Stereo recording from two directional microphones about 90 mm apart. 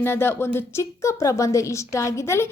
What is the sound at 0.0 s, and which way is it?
A woman's voice, 25° left (ahead or behind).